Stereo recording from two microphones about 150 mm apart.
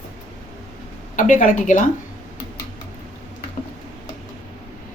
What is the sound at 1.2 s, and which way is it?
Speech, 60° left (ahead or behind).